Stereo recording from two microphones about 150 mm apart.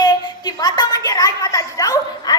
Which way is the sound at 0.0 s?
25° left (ahead or behind).